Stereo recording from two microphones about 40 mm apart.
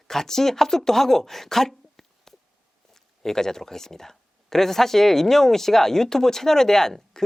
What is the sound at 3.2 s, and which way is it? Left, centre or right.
Speech, centre.